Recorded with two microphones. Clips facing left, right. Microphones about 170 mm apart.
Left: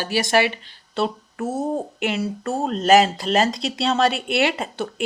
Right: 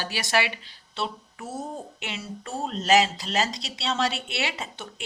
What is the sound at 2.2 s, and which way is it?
Speech, 65° left (ahead or behind).